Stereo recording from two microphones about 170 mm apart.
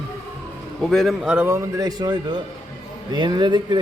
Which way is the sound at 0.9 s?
Centre (ahead or behind).